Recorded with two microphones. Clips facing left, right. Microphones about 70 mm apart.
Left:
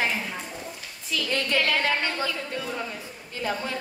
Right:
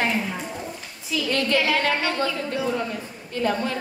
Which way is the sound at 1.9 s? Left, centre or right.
Centre.